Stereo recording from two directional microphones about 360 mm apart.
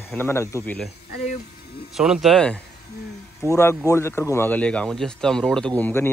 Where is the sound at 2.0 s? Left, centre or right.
Centre.